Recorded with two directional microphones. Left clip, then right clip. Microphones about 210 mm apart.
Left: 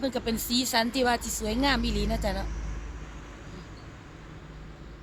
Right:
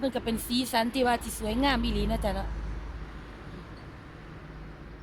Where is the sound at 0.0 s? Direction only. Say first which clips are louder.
Left 1 dB; 10° left (ahead or behind).